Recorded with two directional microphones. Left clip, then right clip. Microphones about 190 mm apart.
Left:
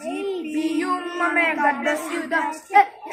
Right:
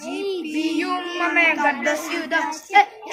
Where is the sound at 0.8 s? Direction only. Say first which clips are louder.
Even; 10° right (ahead or behind).